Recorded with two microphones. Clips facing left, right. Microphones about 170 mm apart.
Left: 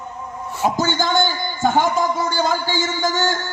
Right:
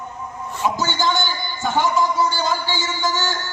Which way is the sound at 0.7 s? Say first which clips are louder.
Left 3 dB; 50° left (ahead or behind).